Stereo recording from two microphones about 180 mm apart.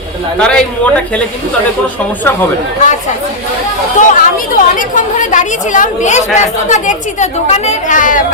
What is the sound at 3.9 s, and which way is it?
A woman's voice, 45° left (ahead or behind).